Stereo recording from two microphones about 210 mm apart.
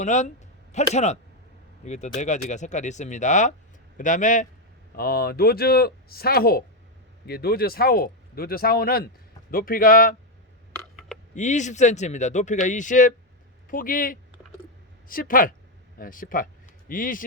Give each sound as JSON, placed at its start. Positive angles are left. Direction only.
{"t": 0.0, "sound": "speech", "side_deg": 35}
{"t": 10.7, "sound": "a sound", "side_deg": 0}
{"t": 11.3, "sound": "speech", "side_deg": 35}